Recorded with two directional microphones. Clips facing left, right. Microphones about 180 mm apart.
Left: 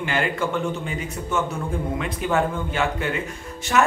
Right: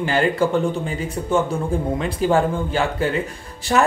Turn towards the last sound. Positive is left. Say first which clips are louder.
# right 4 dB
turn(degrees=-35)  # may be behind; listen again after turning